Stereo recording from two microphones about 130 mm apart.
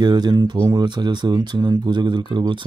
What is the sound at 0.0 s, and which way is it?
Speech, 35° right (ahead or behind).